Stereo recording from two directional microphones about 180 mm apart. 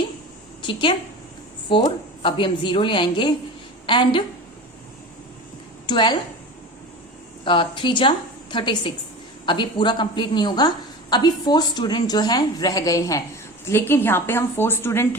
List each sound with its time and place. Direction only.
0.6 s a woman's voice: 25° left (ahead or behind)
5.8 s a woman's voice: 25° left (ahead or behind)
7.4 s a woman's voice: 30° left (ahead or behind)